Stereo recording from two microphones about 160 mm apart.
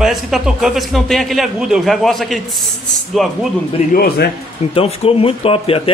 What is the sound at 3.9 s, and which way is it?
Speech, 70° left (ahead or behind).